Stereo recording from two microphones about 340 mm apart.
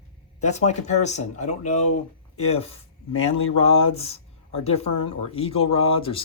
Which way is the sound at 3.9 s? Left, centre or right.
Centre.